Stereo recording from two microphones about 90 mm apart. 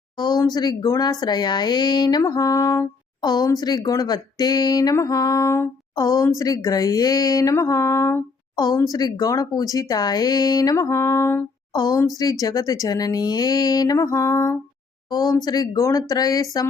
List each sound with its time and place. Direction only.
0.2 s a woman's voice: 50° left (ahead or behind)
7.5 s music: 35° left (ahead or behind)
8.5 s speech: 45° left (ahead or behind)
10.8 s music: 30° left (ahead or behind)
11.7 s speech: 45° left (ahead or behind)
15.1 s speech: 45° left (ahead or behind)